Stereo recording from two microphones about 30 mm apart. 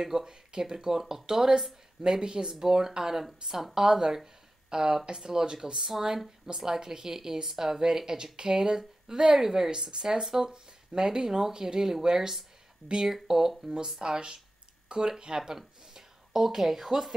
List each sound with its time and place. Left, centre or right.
0.0 s a woman's voice: centre